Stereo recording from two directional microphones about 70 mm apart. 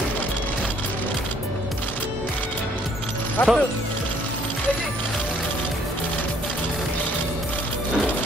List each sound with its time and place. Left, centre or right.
3.4 s speech: left